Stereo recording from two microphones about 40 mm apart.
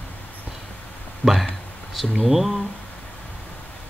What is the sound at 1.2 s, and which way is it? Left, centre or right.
Speech, left.